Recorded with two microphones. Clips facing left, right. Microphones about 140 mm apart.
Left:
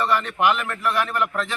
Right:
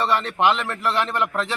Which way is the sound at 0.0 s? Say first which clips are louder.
Right 1 dB; 30° right (ahead or behind).